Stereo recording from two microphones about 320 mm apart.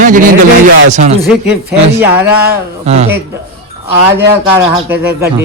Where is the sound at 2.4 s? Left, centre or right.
Centre.